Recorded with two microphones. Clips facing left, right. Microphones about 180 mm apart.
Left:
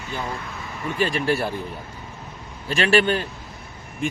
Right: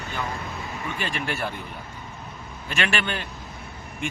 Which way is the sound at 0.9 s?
35° left (ahead or behind).